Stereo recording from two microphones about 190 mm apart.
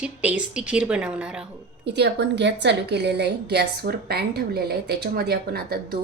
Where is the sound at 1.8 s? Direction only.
65° right (ahead or behind).